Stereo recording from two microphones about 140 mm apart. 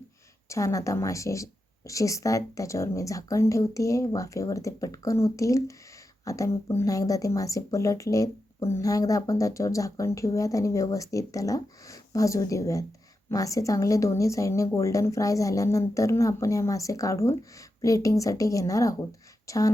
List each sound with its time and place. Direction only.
0.4 s speech: 20° left (ahead or behind)